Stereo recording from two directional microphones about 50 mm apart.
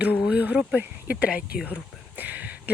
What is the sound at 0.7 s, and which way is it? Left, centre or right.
Speech, right.